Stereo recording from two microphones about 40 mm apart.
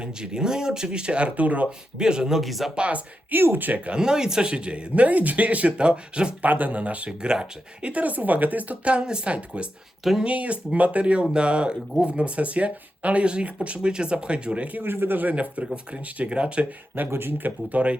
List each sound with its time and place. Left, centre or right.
0.0 s speech: centre; by 1.6 s right
1.6 s speech: right
2.3 s speech: centre
2.7 s speech: right
3.3 s speech: right
3.9 s speech: centre
6.4 s speech: right
7.9 s speech: right
10.0 s speech: centre
10.2 s speech: right
14.8 s speech: right
17.1 s speech: right
17.7 s speech: right